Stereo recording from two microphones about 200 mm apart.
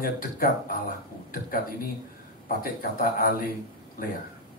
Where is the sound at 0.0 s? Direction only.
45° left (ahead or behind).